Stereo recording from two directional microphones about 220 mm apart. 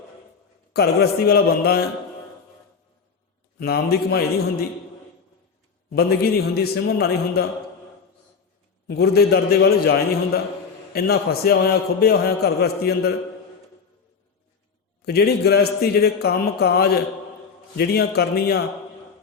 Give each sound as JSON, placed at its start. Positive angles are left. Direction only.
{"t": 0.7, "sound": "a man's voice", "side_deg": 45}
{"t": 3.6, "sound": "a man's voice", "side_deg": 45}
{"t": 5.9, "sound": "a man's voice", "side_deg": 45}
{"t": 8.9, "sound": "a man's voice", "side_deg": 45}
{"t": 15.0, "sound": "a man's voice", "side_deg": 45}